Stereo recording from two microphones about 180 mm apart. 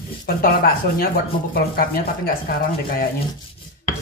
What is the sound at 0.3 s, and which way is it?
Speech, 55° left (ahead or behind).